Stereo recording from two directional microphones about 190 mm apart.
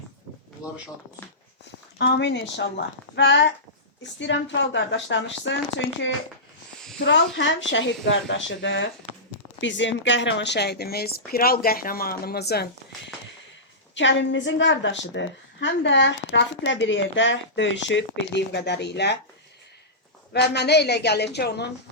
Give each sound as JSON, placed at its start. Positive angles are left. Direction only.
{"t": 2.0, "sound": "speech", "side_deg": 65}
{"t": 7.3, "sound": "speech", "side_deg": 75}
{"t": 13.9, "sound": "speech", "side_deg": 70}
{"t": 20.3, "sound": "speech", "side_deg": 60}